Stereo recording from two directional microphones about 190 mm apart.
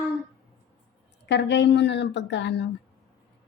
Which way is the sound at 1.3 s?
65° left (ahead or behind).